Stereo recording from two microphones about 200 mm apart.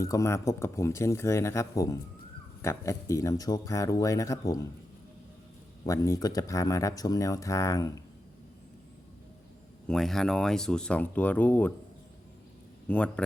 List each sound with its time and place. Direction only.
0.0 s speech: 15° left (ahead or behind)
5.8 s speech: 20° left (ahead or behind)
9.8 s speech: 5° left (ahead or behind)
12.9 s speech: 5° left (ahead or behind)